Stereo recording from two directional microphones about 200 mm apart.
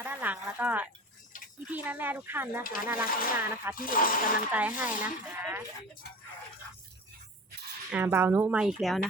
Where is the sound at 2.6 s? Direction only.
45° left (ahead or behind).